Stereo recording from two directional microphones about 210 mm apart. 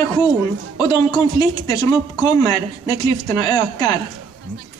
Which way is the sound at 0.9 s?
15° left (ahead or behind).